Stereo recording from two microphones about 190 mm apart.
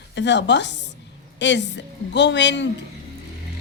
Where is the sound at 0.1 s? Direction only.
65° left (ahead or behind).